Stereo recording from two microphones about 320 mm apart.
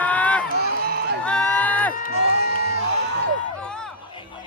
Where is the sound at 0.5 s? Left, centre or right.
Right.